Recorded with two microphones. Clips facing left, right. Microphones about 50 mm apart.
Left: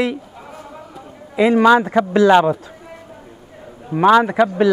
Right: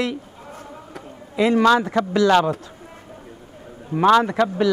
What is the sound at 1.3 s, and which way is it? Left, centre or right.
Speech, centre.